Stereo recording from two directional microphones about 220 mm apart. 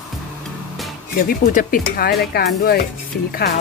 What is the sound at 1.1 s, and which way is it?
Speech, 40° left (ahead or behind).